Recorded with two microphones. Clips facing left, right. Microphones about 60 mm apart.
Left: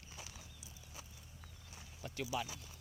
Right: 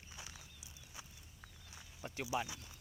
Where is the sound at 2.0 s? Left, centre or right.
Right.